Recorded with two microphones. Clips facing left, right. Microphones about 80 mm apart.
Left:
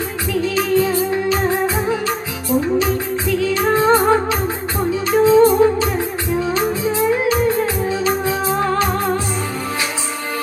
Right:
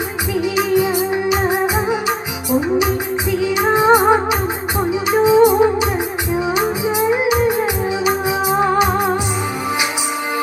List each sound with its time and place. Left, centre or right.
0.3 s music: centre